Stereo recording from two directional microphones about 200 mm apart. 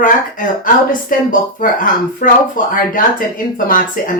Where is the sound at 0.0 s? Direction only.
40° left (ahead or behind).